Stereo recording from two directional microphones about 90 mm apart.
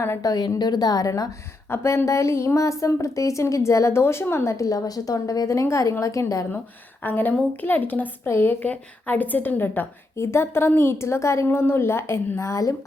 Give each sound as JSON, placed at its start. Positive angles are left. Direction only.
{"t": 0.2, "sound": "a woman's voice", "side_deg": 45}
{"t": 1.7, "sound": "a woman's voice", "side_deg": 30}
{"t": 7.0, "sound": "a woman's voice", "side_deg": 20}